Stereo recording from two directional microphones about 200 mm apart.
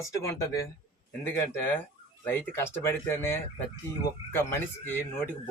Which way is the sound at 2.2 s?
10° left (ahead or behind).